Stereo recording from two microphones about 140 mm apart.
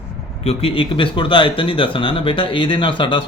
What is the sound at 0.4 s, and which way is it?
Speech, 40° left (ahead or behind).